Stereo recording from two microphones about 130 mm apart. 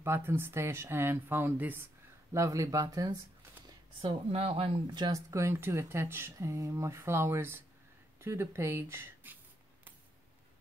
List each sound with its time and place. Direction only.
0.0 s speech: 20° right (ahead or behind)
4.0 s speech: 50° right (ahead or behind)
4.9 s speech: 30° right (ahead or behind)